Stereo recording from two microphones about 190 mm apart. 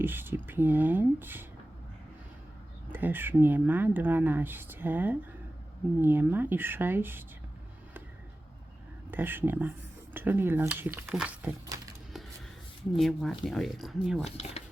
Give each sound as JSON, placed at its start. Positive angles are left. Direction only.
{"t": 0.0, "sound": "speech", "side_deg": -10}
{"t": 2.9, "sound": "speech", "side_deg": -10}
{"t": 9.0, "sound": "speech", "side_deg": -10}
{"t": 13.0, "sound": "speech", "side_deg": 0}
{"t": 14.3, "sound": "speech", "side_deg": 35}